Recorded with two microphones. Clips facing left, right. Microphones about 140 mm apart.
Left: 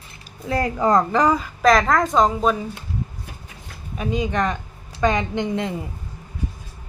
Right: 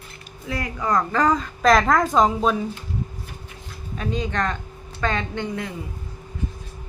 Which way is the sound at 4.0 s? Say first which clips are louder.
Left 3 dB; 10° left (ahead or behind).